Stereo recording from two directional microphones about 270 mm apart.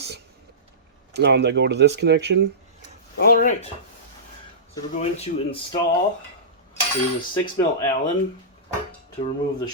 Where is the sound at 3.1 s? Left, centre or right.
Left.